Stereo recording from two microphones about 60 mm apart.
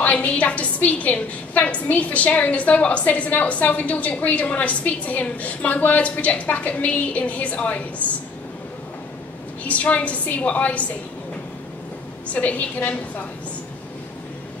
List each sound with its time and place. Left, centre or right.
0.0 s a woman's voice: left
9.7 s a woman's voice: left
12.3 s a woman's voice: left